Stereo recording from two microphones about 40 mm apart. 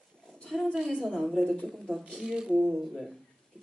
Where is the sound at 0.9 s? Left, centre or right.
Right.